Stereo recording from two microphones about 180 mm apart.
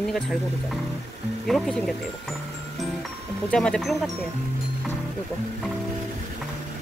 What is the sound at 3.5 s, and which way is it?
Speech, 5° left (ahead or behind).